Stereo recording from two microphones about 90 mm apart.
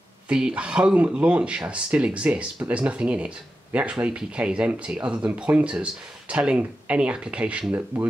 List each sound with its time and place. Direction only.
0.3 s speech: 10° right (ahead or behind)